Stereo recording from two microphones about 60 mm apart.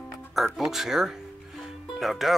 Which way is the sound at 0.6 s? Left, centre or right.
Centre.